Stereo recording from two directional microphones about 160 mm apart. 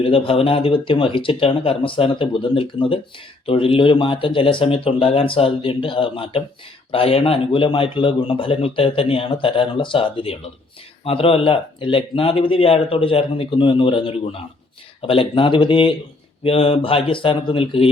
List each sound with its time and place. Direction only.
0.0 s speech: 35° left (ahead or behind)